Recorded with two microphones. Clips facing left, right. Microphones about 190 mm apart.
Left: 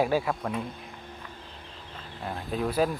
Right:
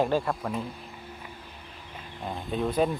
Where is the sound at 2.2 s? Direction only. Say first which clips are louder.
Right 1 dB; centre (ahead or behind).